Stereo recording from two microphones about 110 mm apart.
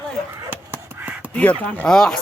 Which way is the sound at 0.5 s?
15° right (ahead or behind).